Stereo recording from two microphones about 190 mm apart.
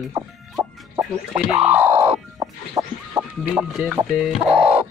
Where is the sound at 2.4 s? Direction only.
15° right (ahead or behind).